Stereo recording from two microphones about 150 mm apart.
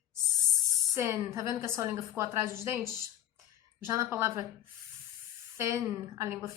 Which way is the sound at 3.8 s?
20° right (ahead or behind).